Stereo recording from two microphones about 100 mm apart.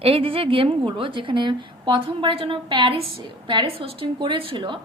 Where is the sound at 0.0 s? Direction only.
70° right (ahead or behind).